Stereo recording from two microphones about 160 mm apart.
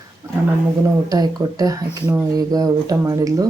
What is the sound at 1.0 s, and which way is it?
Speech, 25° right (ahead or behind).